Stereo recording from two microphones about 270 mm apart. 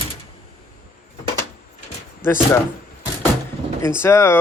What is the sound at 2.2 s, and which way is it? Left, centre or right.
Speech, centre.